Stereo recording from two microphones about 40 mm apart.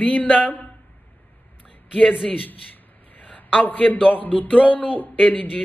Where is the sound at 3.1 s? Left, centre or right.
Left.